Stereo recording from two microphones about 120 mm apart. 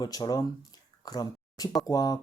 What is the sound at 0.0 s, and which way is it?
Speech, 35° left (ahead or behind).